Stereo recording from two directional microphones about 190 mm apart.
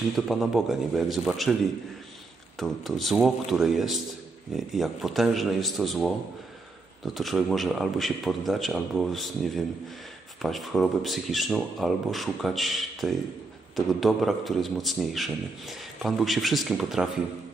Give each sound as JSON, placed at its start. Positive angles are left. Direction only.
{"t": 0.1, "sound": "a man's voice", "side_deg": 0}
{"t": 2.6, "sound": "a man's voice", "side_deg": 0}
{"t": 7.2, "sound": "a man's voice", "side_deg": 0}